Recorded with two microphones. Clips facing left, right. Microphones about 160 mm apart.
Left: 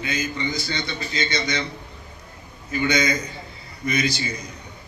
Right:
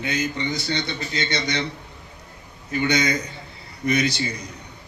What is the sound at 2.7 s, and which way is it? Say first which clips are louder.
A man's voice: even; 65° right (ahead or behind).